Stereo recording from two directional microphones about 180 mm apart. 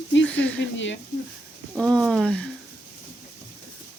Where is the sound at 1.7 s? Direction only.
Centre (ahead or behind).